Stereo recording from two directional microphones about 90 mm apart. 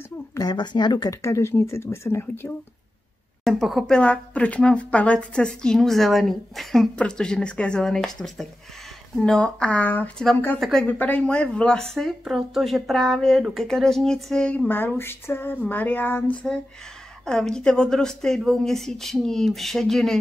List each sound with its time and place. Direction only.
0.4 s speech: 50° left (ahead or behind)
1.2 s speech: 35° left (ahead or behind)
3.4 s speech: centre (ahead or behind)
3.9 s a woman's voice: 15° left (ahead or behind)
10.6 s speech: 5° left (ahead or behind)
10.9 s speech: 20° left (ahead or behind)
14.7 s speech: 20° left (ahead or behind)
17.2 s speech: 5° left (ahead or behind)